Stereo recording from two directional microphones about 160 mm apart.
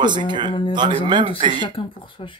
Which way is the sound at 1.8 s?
30° left (ahead or behind).